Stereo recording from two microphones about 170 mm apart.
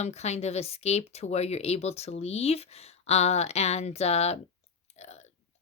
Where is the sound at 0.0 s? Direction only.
40° left (ahead or behind).